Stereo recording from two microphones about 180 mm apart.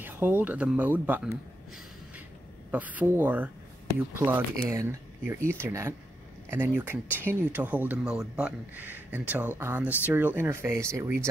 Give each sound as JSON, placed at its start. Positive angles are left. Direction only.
{"t": 0.0, "sound": "speech", "side_deg": -10}
{"t": 2.7, "sound": "speech", "side_deg": -10}